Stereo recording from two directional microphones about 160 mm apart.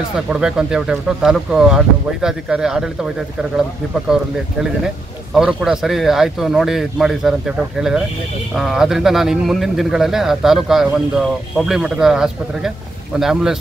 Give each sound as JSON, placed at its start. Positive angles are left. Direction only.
{"t": 0.3, "sound": "speech", "side_deg": -5}
{"t": 4.1, "sound": "speech", "side_deg": -5}